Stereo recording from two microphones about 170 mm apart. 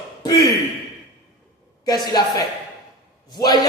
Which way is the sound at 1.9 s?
25° left (ahead or behind).